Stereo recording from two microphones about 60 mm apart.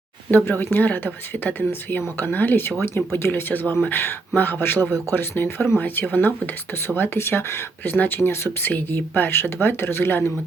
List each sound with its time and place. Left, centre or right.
0.3 s speech: left